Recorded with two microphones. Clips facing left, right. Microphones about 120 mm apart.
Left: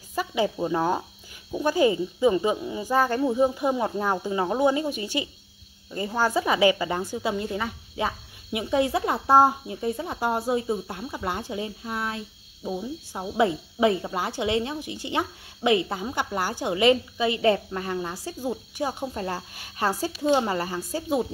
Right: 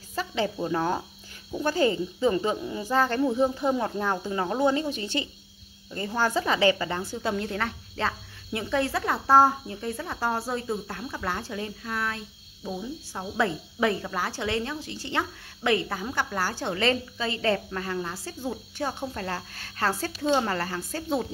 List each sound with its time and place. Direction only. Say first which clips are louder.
0.1 s speech: left 3 dB; 15° left (ahead or behind)